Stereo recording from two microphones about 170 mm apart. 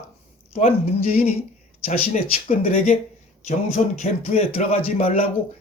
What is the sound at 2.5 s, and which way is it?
Speech, 40° left (ahead or behind).